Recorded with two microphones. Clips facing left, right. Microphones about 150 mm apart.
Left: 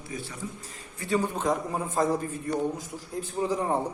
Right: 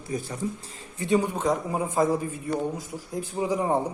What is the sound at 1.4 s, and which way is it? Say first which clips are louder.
Speech: right 2 dB; centre (ahead or behind).